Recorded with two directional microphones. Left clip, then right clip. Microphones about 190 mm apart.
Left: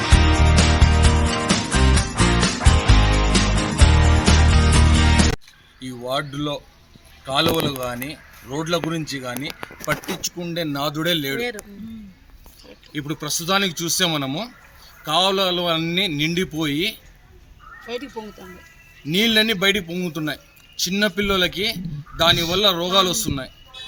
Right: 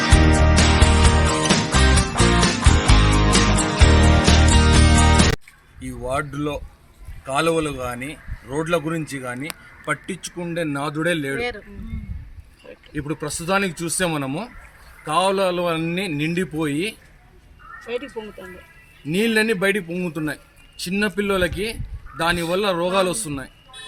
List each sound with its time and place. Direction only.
0.0 s music: centre (ahead or behind)
5.8 s a sound: centre (ahead or behind)
7.3 s a man's voice: centre (ahead or behind)
11.3 s speech: 55° left (ahead or behind)
12.9 s a man's voice: 5° right (ahead or behind)
19.0 s a man's voice: centre (ahead or behind)